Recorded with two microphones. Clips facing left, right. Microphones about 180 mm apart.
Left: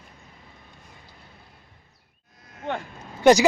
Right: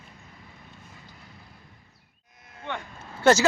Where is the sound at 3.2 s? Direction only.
15° left (ahead or behind).